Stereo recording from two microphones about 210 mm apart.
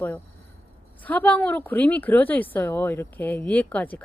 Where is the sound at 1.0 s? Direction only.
5° left (ahead or behind).